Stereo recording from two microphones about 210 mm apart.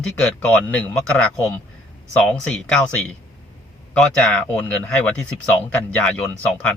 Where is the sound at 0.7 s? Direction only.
5° left (ahead or behind).